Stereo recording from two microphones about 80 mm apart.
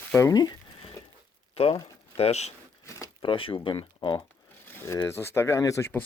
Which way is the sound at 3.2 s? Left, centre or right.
Left.